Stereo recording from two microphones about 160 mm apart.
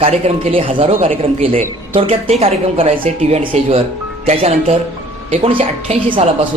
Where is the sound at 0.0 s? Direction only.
40° right (ahead or behind).